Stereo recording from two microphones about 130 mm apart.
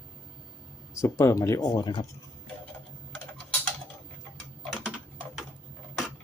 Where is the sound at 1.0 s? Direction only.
25° left (ahead or behind).